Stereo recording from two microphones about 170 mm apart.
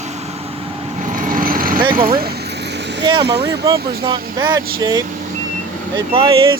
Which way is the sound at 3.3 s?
80° right.